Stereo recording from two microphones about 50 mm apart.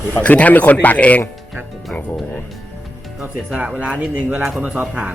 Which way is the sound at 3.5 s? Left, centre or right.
Centre.